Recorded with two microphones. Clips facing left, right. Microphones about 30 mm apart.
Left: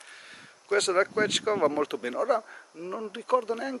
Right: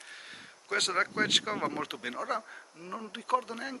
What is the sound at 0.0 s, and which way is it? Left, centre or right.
Speech, centre.